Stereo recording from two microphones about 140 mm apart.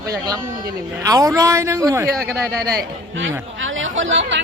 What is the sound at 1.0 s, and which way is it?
A man's voice, 25° right (ahead or behind).